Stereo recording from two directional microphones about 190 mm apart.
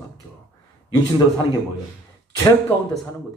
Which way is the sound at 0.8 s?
20° left (ahead or behind).